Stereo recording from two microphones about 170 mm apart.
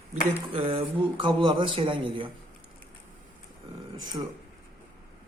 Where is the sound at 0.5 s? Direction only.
35° right (ahead or behind).